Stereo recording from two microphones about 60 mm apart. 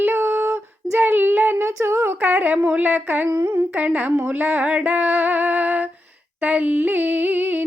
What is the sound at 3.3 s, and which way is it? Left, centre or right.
Female singing, right.